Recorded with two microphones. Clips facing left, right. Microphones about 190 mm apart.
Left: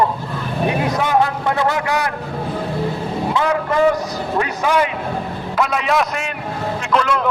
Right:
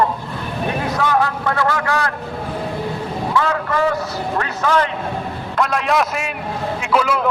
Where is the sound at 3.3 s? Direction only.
15° left (ahead or behind).